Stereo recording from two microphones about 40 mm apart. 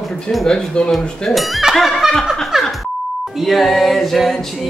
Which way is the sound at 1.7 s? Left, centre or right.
Centre.